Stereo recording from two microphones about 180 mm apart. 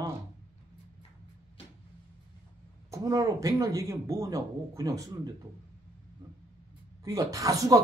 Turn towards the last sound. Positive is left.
turn(degrees=-20)  # may be behind; listen again after turning